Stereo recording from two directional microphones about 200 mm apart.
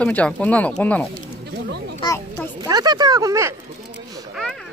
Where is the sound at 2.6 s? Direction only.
20° right (ahead or behind).